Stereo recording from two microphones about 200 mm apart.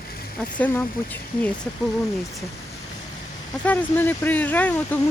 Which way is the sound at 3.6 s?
10° left (ahead or behind).